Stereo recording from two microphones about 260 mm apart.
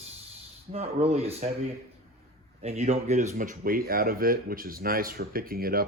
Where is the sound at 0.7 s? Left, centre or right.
Right.